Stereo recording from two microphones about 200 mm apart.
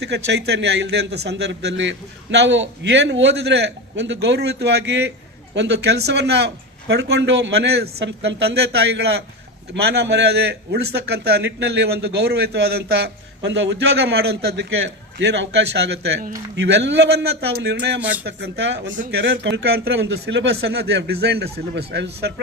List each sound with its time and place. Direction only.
0.0 s a man's voice: 55° right (ahead or behind)